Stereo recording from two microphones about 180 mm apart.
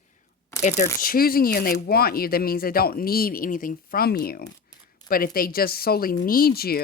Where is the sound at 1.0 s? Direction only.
55° left (ahead or behind).